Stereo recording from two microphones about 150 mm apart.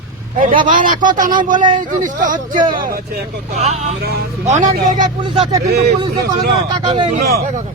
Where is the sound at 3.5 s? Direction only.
50° right (ahead or behind).